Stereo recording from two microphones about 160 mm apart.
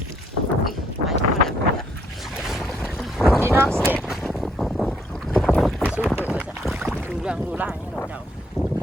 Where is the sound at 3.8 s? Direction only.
5° right (ahead or behind).